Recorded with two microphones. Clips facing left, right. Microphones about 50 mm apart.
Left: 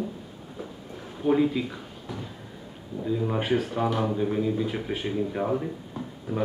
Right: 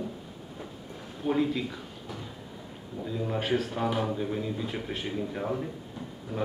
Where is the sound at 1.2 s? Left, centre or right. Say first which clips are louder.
Left 4 dB; centre.